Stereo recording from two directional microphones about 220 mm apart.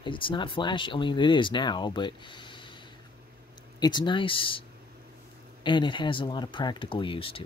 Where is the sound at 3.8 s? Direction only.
20° left (ahead or behind).